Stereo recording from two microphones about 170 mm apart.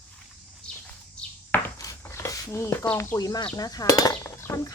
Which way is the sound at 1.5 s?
15° left (ahead or behind).